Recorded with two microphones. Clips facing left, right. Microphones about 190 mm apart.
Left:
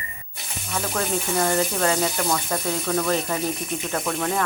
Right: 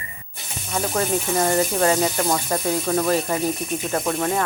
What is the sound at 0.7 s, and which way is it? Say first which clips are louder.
Speech: right 3 dB; 20° right (ahead or behind).